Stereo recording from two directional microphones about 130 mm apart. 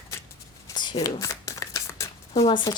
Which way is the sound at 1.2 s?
25° left (ahead or behind).